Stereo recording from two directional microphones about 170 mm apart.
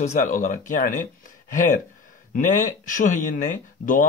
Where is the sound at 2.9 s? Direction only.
50° left (ahead or behind).